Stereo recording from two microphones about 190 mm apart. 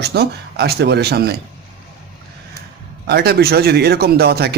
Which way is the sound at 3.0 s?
60° right (ahead or behind).